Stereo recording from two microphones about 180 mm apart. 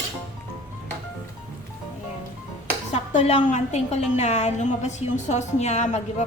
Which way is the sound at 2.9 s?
40° left (ahead or behind).